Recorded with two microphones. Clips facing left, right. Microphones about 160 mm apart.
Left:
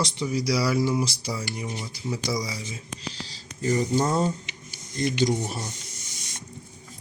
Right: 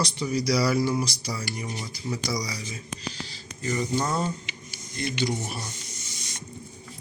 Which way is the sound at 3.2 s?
35° left (ahead or behind).